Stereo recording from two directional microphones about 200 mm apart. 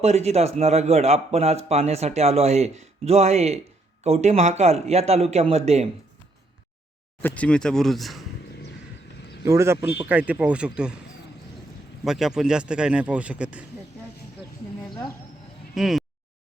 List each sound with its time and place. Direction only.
0.0 s speech: 30° right (ahead or behind)
7.2 s speech: 10° left (ahead or behind)
9.4 s speech: 15° right (ahead or behind)
12.0 s speech: centre (ahead or behind)
15.7 s speech: centre (ahead or behind)